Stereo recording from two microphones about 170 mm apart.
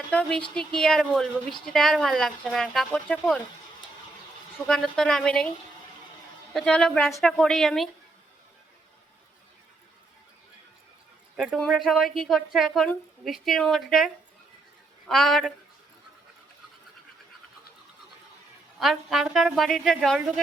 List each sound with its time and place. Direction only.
0.1 s a woman's voice: 5° left (ahead or behind)
4.6 s a woman's voice: 5° left (ahead or behind)
6.5 s a woman's voice: centre (ahead or behind)
11.3 s a woman's voice: centre (ahead or behind)
18.8 s a woman's voice: centre (ahead or behind)